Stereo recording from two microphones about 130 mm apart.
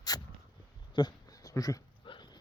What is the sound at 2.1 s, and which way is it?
Dog, 40° left (ahead or behind).